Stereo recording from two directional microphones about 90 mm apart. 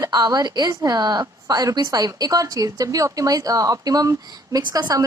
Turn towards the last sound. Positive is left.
turn(degrees=-45)  # may be behind; listen again after turning